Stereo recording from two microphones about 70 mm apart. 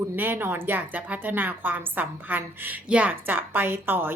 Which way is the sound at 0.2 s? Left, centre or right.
Right.